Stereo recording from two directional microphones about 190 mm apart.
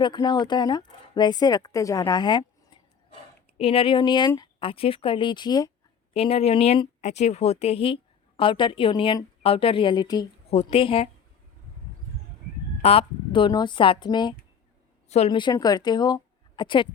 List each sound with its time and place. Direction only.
0.0 s speech: 25° left (ahead or behind)
3.6 s speech: 30° left (ahead or behind)
6.1 s speech: 30° left (ahead or behind)
12.8 s a woman's voice: 30° left (ahead or behind)